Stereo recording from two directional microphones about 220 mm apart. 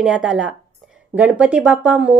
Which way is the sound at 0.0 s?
5° right (ahead or behind).